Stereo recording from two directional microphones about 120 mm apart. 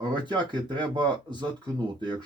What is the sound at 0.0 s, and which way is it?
Speech, 40° right (ahead or behind).